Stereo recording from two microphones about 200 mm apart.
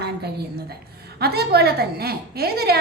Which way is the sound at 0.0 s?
55° right (ahead or behind).